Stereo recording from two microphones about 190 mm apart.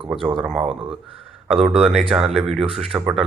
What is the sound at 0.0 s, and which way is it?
Speech, 25° right (ahead or behind).